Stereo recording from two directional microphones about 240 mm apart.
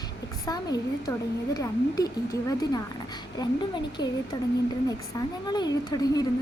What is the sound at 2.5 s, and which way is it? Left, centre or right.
A woman's voice, centre.